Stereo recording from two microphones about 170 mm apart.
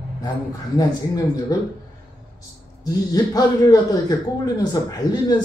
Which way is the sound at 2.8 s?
20° left (ahead or behind).